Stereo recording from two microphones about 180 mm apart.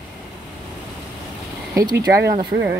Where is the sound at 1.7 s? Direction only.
20° right (ahead or behind).